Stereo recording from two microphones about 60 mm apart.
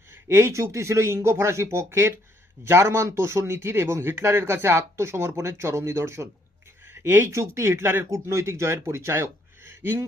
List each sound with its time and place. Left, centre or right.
0.1 s speech: right